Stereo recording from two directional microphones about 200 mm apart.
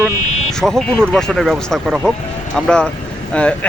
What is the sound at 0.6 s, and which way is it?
Speech, 5° right (ahead or behind).